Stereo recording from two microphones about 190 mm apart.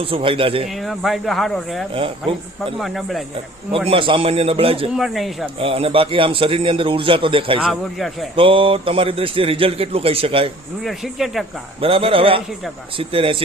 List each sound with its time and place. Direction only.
0.0 s speech: 30° right (ahead or behind)
0.7 s speech: centre (ahead or behind)
1.9 s speech: 30° right (ahead or behind)
2.7 s speech: centre (ahead or behind)
3.8 s speech: 25° right (ahead or behind)
4.9 s speech: centre (ahead or behind)
5.5 s speech: 30° right (ahead or behind)
7.6 s speech: centre (ahead or behind)
8.4 s speech: 30° right (ahead or behind)
10.8 s speech: centre (ahead or behind)
11.8 s speech: 30° right (ahead or behind)